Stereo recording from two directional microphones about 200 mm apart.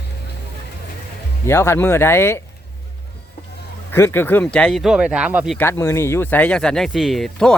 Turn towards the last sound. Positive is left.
turn(degrees=0)  # may be behind; listen again after turning